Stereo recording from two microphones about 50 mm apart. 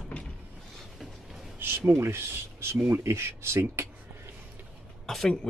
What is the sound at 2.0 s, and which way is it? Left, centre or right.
Speech, right.